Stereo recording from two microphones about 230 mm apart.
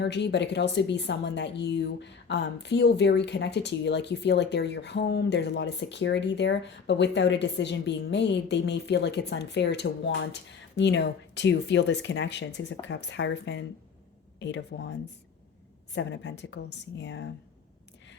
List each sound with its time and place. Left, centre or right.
0.0 s a woman's voice: left